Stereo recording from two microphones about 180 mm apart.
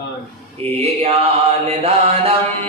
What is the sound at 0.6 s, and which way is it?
Mantra, 35° right (ahead or behind).